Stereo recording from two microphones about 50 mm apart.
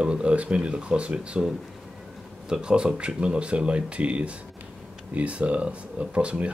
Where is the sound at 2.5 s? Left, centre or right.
Centre.